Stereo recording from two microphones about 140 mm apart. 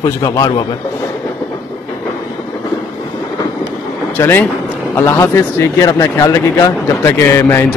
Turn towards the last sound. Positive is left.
turn(degrees=20)  # may be behind; listen again after turning